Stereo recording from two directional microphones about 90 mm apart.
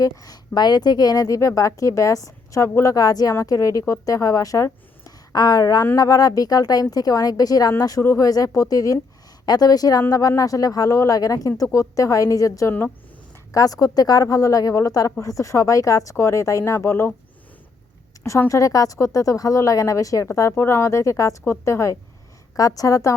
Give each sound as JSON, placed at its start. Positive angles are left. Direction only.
{"t": 0.0, "sound": "a woman's voice", "side_deg": 40}
{"t": 18.3, "sound": "a woman's voice", "side_deg": 35}